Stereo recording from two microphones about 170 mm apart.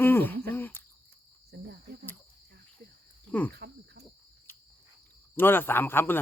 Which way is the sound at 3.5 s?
75° right (ahead or behind).